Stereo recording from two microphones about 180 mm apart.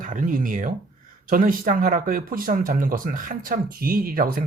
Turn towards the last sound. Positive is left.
turn(degrees=-50)  # may be behind; listen again after turning